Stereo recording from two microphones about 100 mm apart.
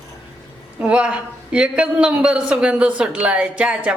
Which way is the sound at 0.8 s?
10° right (ahead or behind).